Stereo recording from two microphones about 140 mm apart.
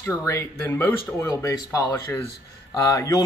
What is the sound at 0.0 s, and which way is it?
Speech, 20° left (ahead or behind).